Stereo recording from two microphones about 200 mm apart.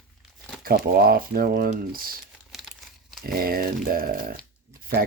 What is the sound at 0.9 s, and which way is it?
Speech, 50° right (ahead or behind).